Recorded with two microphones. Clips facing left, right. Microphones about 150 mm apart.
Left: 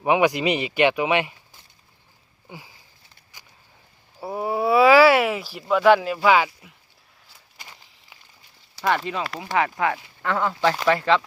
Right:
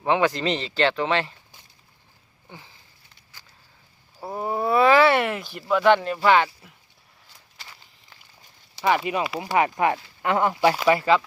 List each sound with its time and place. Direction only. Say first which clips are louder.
0.0 s speech: left 2 dB; 15° left (ahead or behind)
2.5 s a sound: left 3 dB; 10° left (ahead or behind)
4.2 s speech: left 2 dB; 5° left (ahead or behind)
8.8 s speech: right 2 dB; 5° right (ahead or behind)